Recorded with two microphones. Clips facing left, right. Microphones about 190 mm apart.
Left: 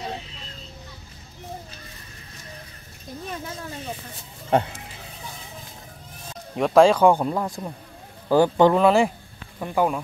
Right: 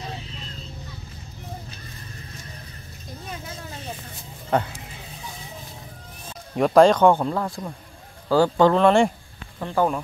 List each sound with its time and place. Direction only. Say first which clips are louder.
4.5 s speech: left 2 dB; 25° left (ahead or behind)
6.5 s a man's voice: right 1 dB; centre (ahead or behind); by 8.7 s 20° left (ahead or behind)
8.7 s a man's voice: right 1 dB; 5° left (ahead or behind)